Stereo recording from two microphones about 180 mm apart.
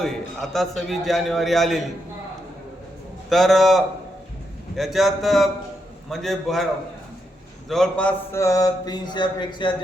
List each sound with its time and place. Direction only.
0.0 s a man's voice: centre (ahead or behind)
3.2 s a man's voice: centre (ahead or behind)
7.7 s a man's voice: 5° left (ahead or behind); by 9.7 s 25° left (ahead or behind)